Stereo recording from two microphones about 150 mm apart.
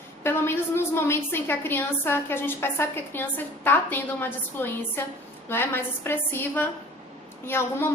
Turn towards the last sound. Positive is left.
turn(degrees=15)  # may be behind; listen again after turning